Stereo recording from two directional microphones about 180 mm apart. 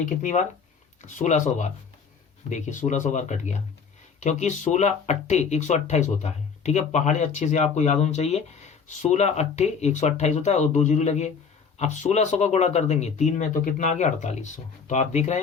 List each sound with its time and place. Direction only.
0.0 s speech: 45° left (ahead or behind)